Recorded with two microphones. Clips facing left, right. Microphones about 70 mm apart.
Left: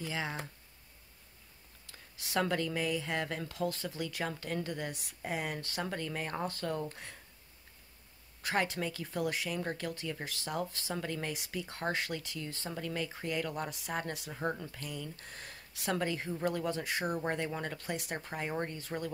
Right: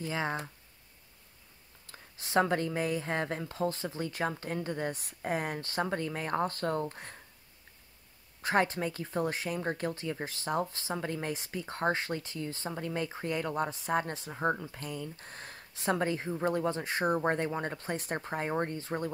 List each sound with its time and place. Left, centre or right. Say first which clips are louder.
0.0 s speech: right 4 dB; right
1.9 s speech: right 2 dB; right
8.4 s speech: right 4 dB; right